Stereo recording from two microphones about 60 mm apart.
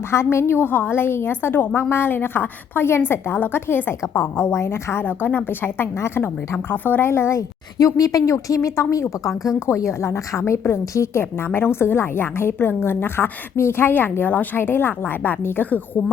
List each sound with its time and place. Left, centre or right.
0.1 s a woman's voice: left
7.3 s a woman's voice: left
9.2 s speech: centre
9.6 s a woman's voice: left